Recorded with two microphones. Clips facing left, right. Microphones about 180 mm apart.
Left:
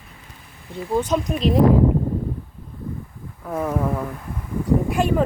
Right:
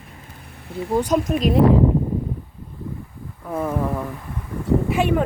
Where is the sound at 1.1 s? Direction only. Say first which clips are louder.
Right 2 dB; centre (ahead or behind).